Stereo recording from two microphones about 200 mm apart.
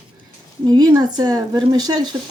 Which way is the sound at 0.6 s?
20° right (ahead or behind).